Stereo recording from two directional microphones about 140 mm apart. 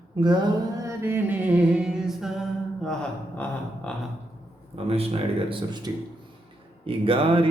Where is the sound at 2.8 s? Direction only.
5° left (ahead or behind).